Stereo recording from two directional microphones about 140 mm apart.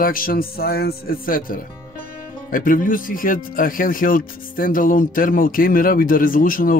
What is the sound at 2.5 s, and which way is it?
Speech, 75° left (ahead or behind).